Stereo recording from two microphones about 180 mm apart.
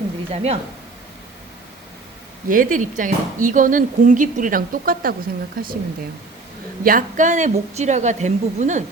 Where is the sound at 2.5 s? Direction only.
45° right (ahead or behind).